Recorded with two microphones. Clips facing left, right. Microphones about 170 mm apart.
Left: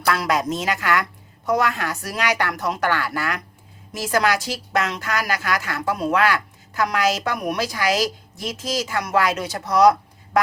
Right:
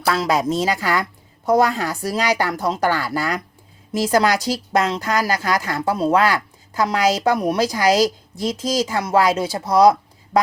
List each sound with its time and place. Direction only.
0.1 s a woman's voice: 25° right (ahead or behind)